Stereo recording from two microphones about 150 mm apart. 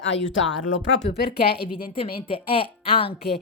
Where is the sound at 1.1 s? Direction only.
40° left (ahead or behind).